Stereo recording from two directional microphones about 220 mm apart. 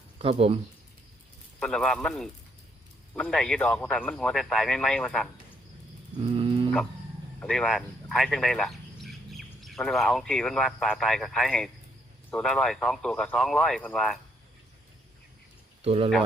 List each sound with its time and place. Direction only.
0.2 s speech: 25° right (ahead or behind)
1.5 s speech: 5° left (ahead or behind)
6.2 s dog: 25° right (ahead or behind)
7.3 s speech: 5° left (ahead or behind)
15.8 s speech: 25° right (ahead or behind)